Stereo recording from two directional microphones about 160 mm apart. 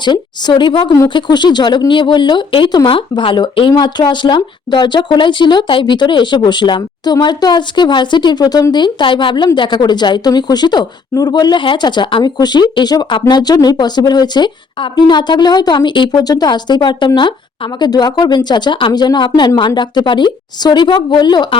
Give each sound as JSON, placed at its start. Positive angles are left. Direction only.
{"t": 0.0, "sound": "speech", "side_deg": 30}